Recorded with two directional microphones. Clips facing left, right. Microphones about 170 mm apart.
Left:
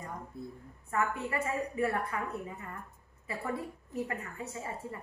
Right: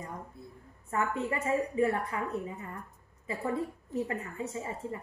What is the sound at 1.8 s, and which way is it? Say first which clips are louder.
Speech: right 3 dB; 20° right (ahead or behind).